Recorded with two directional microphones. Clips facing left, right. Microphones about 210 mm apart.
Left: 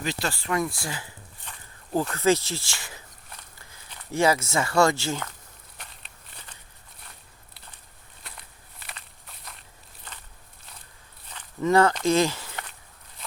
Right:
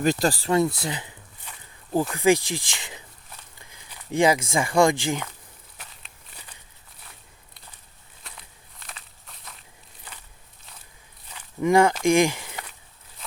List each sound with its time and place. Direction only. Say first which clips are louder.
0.0 s speech: right 8 dB; 45° right (ahead or behind); by 5.3 s 15° right (ahead or behind)
5.7 s walk: left 1 dB; 5° right (ahead or behind)
8.2 s walk: even; centre (ahead or behind)
11.3 s walk: right 2 dB; 10° right (ahead or behind)